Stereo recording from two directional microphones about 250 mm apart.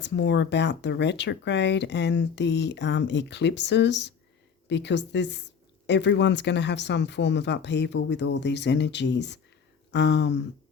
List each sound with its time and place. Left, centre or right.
0.0 s speech: left